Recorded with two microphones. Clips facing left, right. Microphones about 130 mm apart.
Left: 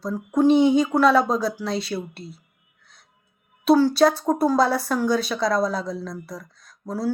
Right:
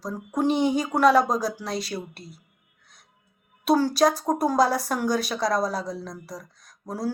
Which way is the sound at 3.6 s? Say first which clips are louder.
Left 4 dB; 40° right (ahead or behind).